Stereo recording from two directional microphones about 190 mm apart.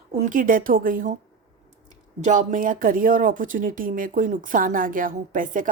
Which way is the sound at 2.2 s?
40° right (ahead or behind).